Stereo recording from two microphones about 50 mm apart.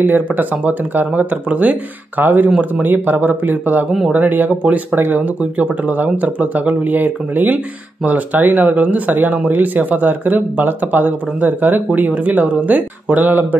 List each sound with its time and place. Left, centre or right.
0.0 s speech: right